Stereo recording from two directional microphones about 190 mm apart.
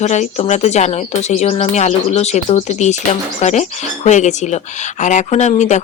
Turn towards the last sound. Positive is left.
turn(degrees=35)  # may be behind; listen again after turning